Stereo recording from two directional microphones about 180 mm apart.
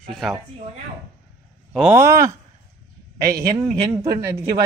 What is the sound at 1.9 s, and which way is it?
Speech, 15° right (ahead or behind).